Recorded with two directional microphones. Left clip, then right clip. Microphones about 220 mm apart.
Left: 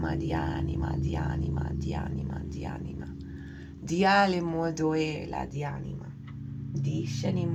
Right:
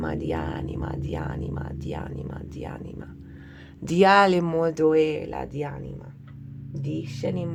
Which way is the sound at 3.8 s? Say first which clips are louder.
Right 6 dB; 45° right (ahead or behind).